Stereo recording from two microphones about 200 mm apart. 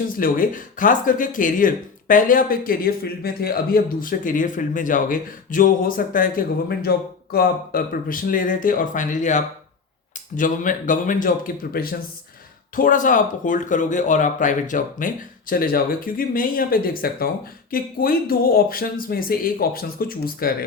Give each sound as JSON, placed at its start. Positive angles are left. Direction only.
{"t": 0.2, "sound": "speech", "side_deg": 45}